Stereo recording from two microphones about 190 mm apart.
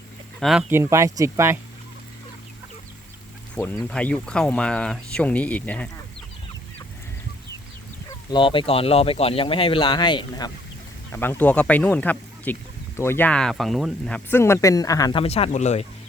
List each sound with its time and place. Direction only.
0.3 s speech: centre (ahead or behind)
0.7 s speech: 15° right (ahead or behind)
3.5 s speech: 10° left (ahead or behind)
8.3 s speech: 25° left (ahead or behind)
11.1 s speech: 10° left (ahead or behind)
15.2 s speech: 30° left (ahead or behind)